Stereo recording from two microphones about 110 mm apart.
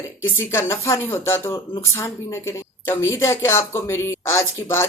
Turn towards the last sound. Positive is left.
turn(degrees=25)  # may be behind; listen again after turning